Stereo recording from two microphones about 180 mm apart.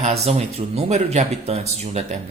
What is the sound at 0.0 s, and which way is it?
Speech, 40° right (ahead or behind).